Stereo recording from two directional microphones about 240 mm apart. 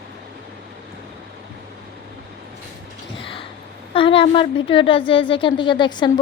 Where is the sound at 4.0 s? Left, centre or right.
Left.